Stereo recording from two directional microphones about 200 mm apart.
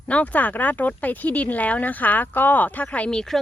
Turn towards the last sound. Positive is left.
turn(degrees=5)  # may be behind; listen again after turning